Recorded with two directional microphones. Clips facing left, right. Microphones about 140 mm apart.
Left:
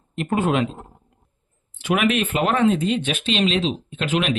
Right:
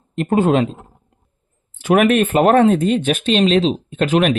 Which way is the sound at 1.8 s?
50° right (ahead or behind).